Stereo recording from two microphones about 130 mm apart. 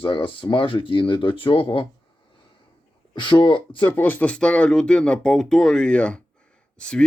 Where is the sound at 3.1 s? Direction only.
40° left (ahead or behind).